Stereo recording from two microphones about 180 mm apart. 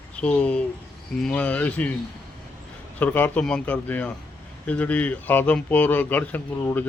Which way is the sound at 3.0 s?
10° left (ahead or behind).